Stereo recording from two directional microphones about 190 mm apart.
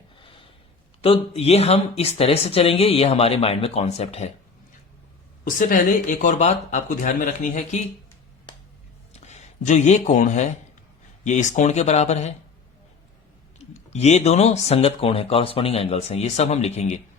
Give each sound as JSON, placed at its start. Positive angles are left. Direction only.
{"t": 0.2, "sound": "a sound", "side_deg": 25}
{"t": 1.0, "sound": "speech", "side_deg": 30}
{"t": 5.5, "sound": "speech", "side_deg": 45}
{"t": 9.2, "sound": "speech", "side_deg": 35}
{"t": 13.6, "sound": "speech", "side_deg": 35}